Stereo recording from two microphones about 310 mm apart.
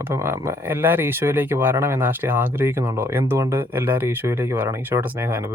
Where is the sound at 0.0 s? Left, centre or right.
Centre.